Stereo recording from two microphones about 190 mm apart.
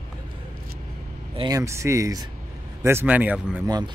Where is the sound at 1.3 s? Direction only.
20° right (ahead or behind).